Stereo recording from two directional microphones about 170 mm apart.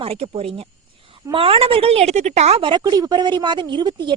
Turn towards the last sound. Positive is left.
turn(degrees=-25)  # may be behind; listen again after turning